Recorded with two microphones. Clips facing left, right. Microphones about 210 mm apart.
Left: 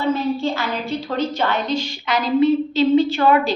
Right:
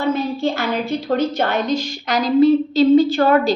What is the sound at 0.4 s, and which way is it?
A woman's voice, 50° right (ahead or behind).